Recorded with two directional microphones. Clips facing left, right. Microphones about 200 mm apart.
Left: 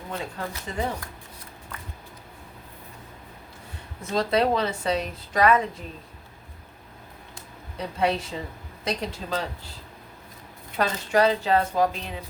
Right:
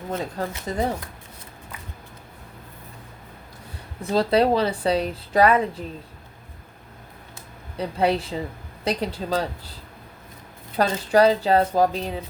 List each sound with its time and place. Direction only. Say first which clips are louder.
0.1 s a woman's voice: right 5 dB; 40° right (ahead or behind)
4.1 s a woman's voice: right 4 dB; 30° right (ahead or behind)
7.8 s a woman's voice: right 3 dB; 35° right (ahead or behind)
10.8 s a woman's voice: right 4 dB; 35° right (ahead or behind)